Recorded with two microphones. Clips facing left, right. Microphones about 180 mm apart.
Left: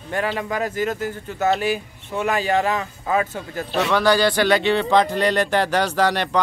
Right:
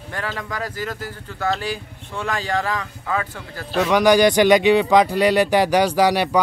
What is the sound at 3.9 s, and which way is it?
Speech, 15° right (ahead or behind).